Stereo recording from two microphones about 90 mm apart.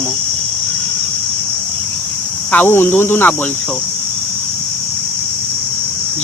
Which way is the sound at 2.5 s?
20° left (ahead or behind).